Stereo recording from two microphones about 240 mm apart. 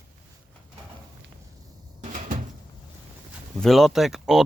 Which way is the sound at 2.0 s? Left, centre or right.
Right.